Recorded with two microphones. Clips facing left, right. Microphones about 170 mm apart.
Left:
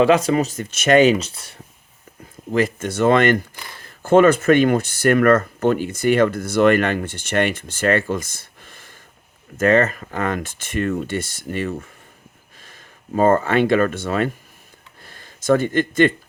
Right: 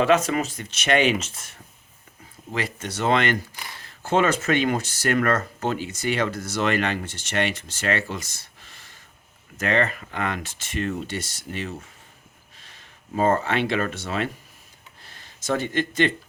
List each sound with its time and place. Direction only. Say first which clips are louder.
0.0 s speech: left 5 dB; 35° left (ahead or behind)
2.5 s speech: left 9 dB; 45° left (ahead or behind)